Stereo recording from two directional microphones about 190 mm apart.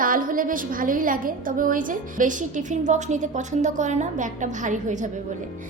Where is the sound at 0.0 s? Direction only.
45° right (ahead or behind).